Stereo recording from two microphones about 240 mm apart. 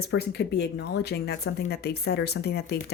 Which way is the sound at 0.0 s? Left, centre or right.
Left.